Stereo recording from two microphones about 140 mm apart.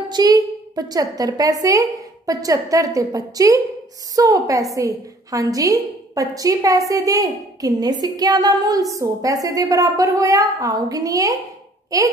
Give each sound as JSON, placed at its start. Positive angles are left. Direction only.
{"t": 0.1, "sound": "a woman's voice", "side_deg": -30}